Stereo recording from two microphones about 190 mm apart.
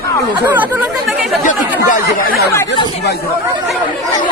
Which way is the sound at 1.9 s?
50° left (ahead or behind).